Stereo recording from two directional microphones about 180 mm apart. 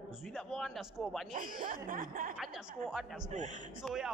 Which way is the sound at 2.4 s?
5° right (ahead or behind).